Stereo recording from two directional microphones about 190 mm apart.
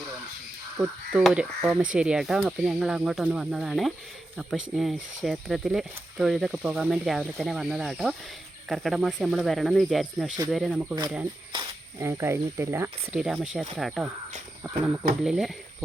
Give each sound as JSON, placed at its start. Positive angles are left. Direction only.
{"t": 0.8, "sound": "speech", "side_deg": -5}
{"t": 11.5, "sound": "cricket", "side_deg": -25}
{"t": 12.0, "sound": "speech", "side_deg": -15}
{"t": 13.1, "sound": "speech", "side_deg": 0}